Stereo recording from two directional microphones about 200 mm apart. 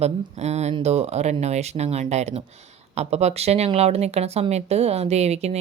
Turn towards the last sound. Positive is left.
turn(degrees=-30)  # may be behind; listen again after turning